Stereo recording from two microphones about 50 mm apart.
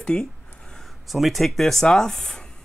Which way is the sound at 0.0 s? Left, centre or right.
Centre.